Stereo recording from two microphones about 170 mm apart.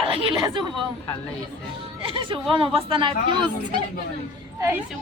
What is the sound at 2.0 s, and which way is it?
Speech, 30° right (ahead or behind).